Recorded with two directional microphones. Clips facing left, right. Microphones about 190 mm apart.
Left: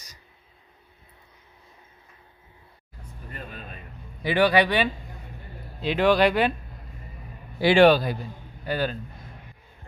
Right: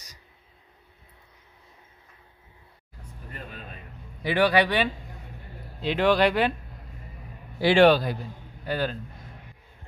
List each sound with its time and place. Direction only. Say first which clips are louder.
4.2 s speech: left 1 dB; 15° left (ahead or behind)
7.6 s speech: left 1 dB; 10° left (ahead or behind)